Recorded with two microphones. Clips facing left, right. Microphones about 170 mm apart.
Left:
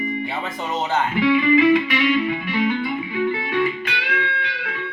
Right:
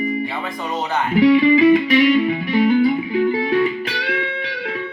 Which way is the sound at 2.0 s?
35° right (ahead or behind).